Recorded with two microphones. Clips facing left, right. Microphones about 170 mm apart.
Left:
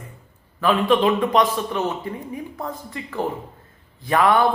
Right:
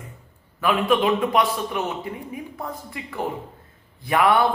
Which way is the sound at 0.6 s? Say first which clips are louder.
Left 2 dB; 10° right (ahead or behind).